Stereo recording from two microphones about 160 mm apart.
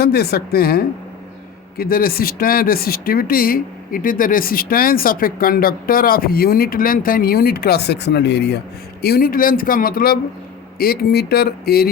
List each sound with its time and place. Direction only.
0.0 s speech: 80° left
9.0 s a man's voice: 75° left (ahead or behind)
10.8 s speech: 80° left